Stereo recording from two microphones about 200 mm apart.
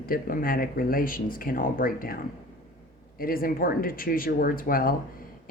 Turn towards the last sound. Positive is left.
turn(degrees=45)  # may be behind; listen again after turning